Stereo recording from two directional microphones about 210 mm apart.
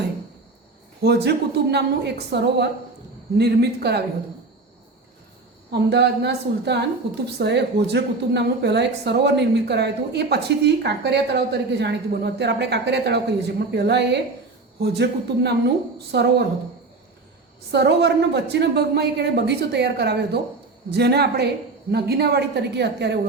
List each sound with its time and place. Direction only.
1.0 s a woman's voice: 50° right (ahead or behind)
5.7 s a woman's voice: 50° right (ahead or behind)
17.7 s a woman's voice: 55° right (ahead or behind)